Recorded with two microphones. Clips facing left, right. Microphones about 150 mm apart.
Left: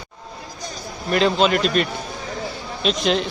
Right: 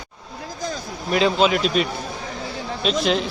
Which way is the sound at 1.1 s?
Centre (ahead or behind).